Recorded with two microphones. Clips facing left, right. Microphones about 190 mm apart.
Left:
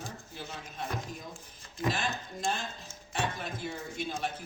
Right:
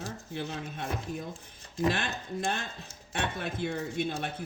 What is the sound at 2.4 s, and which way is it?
Speech, 55° right (ahead or behind).